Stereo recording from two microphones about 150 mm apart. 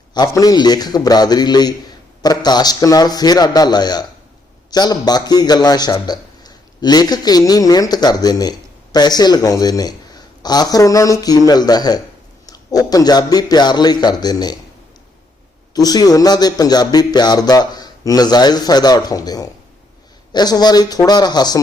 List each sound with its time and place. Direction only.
0.1 s a man's voice: 25° left (ahead or behind)
15.7 s a man's voice: 25° left (ahead or behind)